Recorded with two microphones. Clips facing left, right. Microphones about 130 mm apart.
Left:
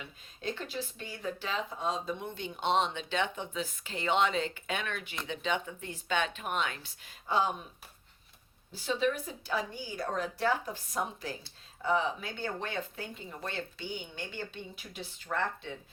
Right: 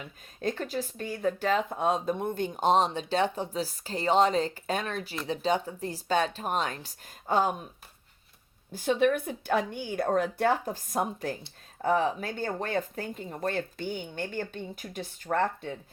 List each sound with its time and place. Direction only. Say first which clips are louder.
0.4 s speech: right 6 dB; 45° right (ahead or behind)
8.7 s speech: right 6 dB; 50° right (ahead or behind)